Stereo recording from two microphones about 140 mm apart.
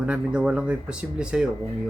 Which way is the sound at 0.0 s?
10° right (ahead or behind).